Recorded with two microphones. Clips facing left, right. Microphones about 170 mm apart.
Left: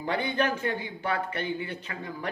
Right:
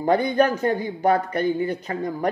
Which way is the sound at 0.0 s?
40° right (ahead or behind).